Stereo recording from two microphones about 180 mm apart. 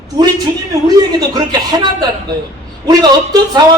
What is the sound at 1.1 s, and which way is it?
A man's voice, 20° right (ahead or behind).